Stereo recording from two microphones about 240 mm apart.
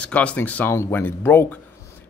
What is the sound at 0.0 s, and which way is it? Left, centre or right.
Speech, centre.